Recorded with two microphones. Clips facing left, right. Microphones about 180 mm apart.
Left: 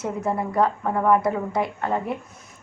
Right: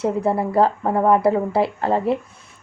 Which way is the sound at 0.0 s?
30° right (ahead or behind).